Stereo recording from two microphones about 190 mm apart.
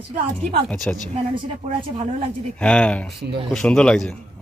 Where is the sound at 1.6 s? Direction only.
35° right (ahead or behind).